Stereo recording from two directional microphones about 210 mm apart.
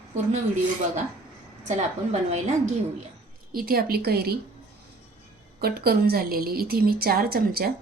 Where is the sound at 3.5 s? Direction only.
45° right (ahead or behind).